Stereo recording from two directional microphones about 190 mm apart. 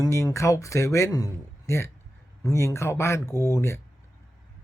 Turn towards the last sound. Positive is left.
turn(degrees=15)  # may be behind; listen again after turning